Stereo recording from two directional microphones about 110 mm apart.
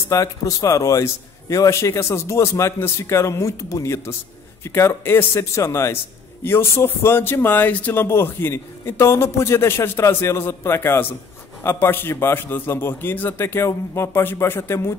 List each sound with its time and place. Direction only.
0.1 s speech: 30° left (ahead or behind)